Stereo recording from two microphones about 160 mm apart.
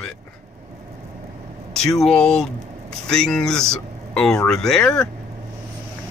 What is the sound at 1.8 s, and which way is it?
Speech, 5° left (ahead or behind).